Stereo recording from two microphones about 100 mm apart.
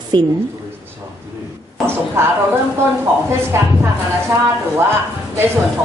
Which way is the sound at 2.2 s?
25° right (ahead or behind).